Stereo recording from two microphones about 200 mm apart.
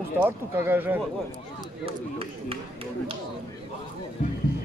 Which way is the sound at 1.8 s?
30° right (ahead or behind).